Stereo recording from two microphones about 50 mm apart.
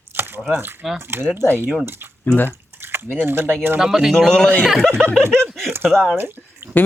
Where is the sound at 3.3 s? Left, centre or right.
Right.